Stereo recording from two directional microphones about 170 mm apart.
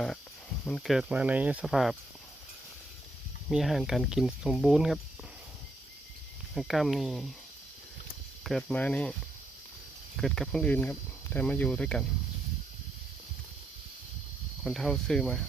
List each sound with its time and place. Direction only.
0.6 s speech: 5° left (ahead or behind)
3.5 s speech: centre (ahead or behind)
6.5 s speech: centre (ahead or behind)
8.4 s speech: 5° left (ahead or behind)
10.2 s speech: centre (ahead or behind)
14.6 s speech: centre (ahead or behind)